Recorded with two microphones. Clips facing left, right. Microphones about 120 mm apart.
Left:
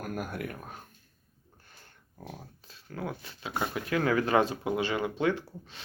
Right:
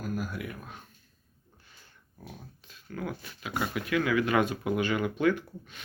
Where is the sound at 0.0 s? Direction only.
55° left (ahead or behind).